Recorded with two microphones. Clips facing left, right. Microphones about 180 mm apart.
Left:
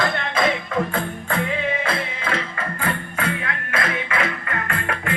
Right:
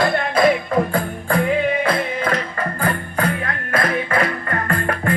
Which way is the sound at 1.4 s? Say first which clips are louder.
Right 6 dB; 35° right (ahead or behind).